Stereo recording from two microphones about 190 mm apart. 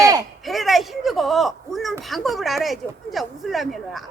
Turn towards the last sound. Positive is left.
turn(degrees=0)  # may be behind; listen again after turning